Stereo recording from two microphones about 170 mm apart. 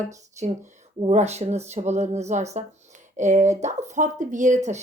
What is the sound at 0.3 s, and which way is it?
Speech, 45° right (ahead or behind).